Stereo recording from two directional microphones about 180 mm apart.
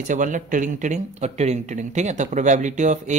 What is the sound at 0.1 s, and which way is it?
Speech, 45° right (ahead or behind).